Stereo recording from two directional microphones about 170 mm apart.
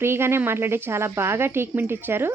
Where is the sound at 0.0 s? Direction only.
15° right (ahead or behind).